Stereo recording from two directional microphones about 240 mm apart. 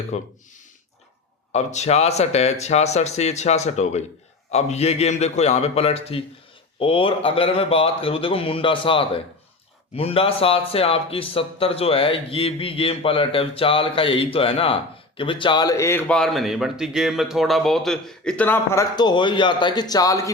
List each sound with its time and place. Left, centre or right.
0.1 s a man's voice: left
1.5 s a man's voice: left